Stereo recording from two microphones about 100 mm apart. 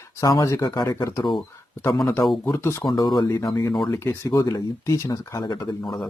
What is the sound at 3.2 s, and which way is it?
Speech, 30° left (ahead or behind).